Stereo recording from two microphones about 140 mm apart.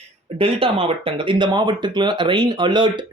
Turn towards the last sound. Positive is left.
turn(degrees=-35)  # may be behind; listen again after turning